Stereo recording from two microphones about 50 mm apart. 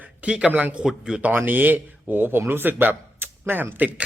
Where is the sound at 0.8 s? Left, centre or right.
Centre.